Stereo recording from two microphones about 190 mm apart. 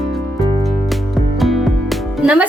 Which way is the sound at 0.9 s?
Centre (ahead or behind).